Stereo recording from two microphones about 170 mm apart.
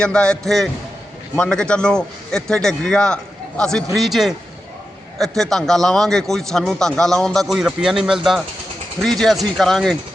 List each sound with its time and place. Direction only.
0.0 s a man's voice: 5° left (ahead or behind)